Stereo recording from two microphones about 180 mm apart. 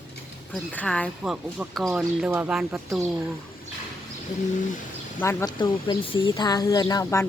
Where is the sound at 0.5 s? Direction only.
5° left (ahead or behind).